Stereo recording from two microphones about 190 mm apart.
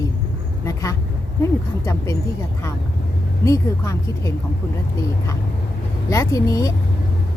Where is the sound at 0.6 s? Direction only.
15° left (ahead or behind).